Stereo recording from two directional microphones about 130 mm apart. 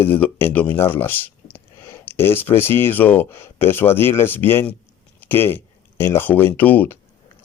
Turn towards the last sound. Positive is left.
turn(degrees=15)  # may be behind; listen again after turning